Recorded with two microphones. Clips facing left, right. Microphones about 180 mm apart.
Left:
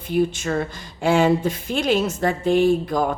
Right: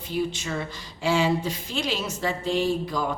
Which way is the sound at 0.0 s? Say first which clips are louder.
Left 7 dB; 55° left (ahead or behind).